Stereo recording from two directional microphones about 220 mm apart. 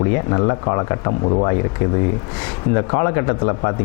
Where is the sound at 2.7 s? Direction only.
25° left (ahead or behind).